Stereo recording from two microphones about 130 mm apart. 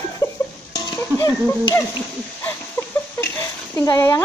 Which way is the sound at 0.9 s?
30° left (ahead or behind).